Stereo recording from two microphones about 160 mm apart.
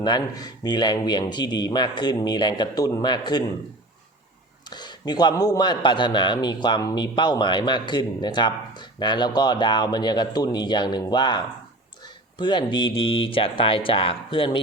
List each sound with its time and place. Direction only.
0.0 s a man's voice: 25° left (ahead or behind)
4.7 s a man's voice: 25° left (ahead or behind)